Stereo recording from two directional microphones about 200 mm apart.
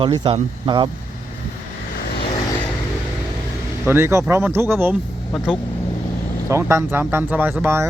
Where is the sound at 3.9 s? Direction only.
10° right (ahead or behind).